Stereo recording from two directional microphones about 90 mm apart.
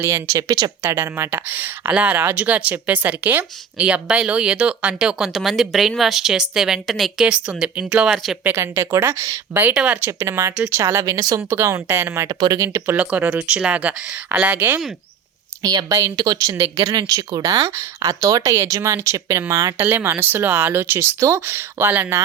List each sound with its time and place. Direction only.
0.0 s speech: 35° right (ahead or behind)
0.8 s speech: 30° right (ahead or behind); by 8.4 s 5° right (ahead or behind)
8.4 s speech: 30° right (ahead or behind)
9.7 s speech: 15° right (ahead or behind)
10.0 s speech: 35° right (ahead or behind)
11.4 s speech: 30° right (ahead or behind)
13.0 s speech: 15° right (ahead or behind)
15.6 s speech: 40° right (ahead or behind)
19.8 s speech: 20° right (ahead or behind)